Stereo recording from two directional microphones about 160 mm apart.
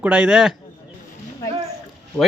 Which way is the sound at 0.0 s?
5° right (ahead or behind).